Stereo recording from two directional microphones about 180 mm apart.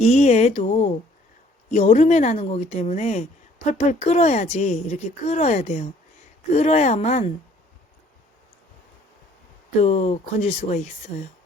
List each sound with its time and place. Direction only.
0.0 s speech: 35° left (ahead or behind)
9.8 s speech: 40° left (ahead or behind)